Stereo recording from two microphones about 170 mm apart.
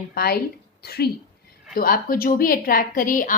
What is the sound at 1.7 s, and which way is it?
A woman's voice, 55° left (ahead or behind).